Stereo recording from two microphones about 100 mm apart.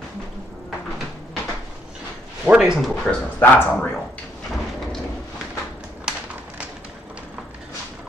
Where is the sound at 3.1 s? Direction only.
20° left (ahead or behind).